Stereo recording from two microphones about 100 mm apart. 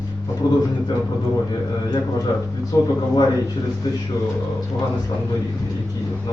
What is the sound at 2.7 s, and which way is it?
Speech, 30° left (ahead or behind).